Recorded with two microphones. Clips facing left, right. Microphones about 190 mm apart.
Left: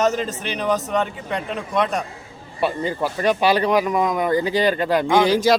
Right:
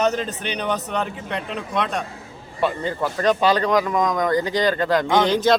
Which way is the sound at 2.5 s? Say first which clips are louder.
Left 1 dB; 15° left (ahead or behind).